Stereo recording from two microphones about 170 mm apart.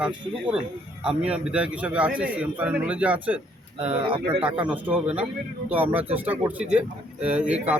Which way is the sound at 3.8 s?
30° right (ahead or behind).